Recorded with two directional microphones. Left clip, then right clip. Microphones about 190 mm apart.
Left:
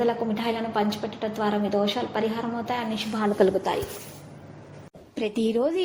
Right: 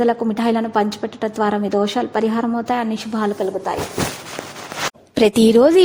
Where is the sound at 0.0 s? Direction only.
40° right (ahead or behind).